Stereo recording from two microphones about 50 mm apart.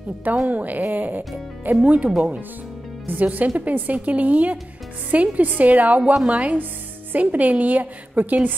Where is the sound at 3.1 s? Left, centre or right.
Right.